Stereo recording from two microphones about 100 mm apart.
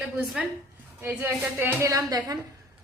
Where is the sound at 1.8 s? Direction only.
35° right (ahead or behind).